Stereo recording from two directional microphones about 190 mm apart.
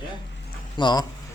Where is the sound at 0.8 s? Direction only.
25° left (ahead or behind).